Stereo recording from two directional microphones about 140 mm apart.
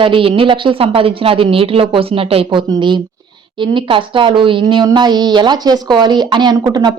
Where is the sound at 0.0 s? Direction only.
40° right (ahead or behind).